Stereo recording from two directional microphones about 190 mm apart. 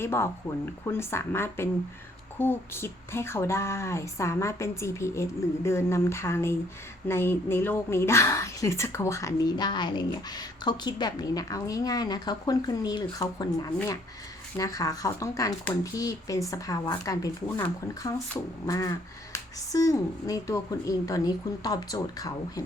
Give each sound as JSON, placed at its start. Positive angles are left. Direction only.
{"t": 0.0, "sound": "speech", "side_deg": 15}